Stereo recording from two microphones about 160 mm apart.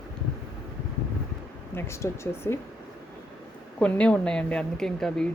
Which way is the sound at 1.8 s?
15° left (ahead or behind).